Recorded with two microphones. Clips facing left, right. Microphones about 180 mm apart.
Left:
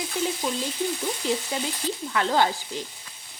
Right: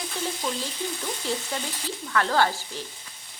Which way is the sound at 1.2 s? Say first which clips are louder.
Left 3 dB; 15° left (ahead or behind).